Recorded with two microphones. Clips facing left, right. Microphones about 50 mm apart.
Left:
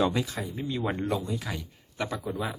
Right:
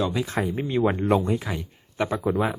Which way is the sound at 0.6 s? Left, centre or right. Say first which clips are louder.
Right 6 dB; right.